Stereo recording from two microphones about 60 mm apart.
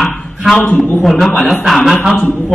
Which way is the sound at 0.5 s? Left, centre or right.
Left.